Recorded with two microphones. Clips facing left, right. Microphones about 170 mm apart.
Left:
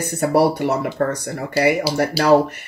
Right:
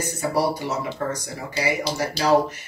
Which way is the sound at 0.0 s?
60° left (ahead or behind).